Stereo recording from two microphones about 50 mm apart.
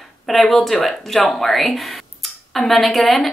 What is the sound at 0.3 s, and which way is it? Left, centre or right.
A woman's voice, centre.